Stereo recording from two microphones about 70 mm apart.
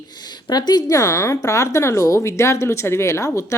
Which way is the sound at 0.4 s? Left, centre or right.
Left.